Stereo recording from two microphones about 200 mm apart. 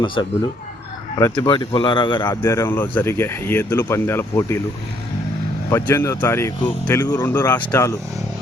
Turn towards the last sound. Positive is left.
turn(degrees=15)  # may be behind; listen again after turning